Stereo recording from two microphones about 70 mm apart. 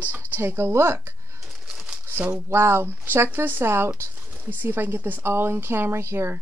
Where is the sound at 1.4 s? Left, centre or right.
Centre.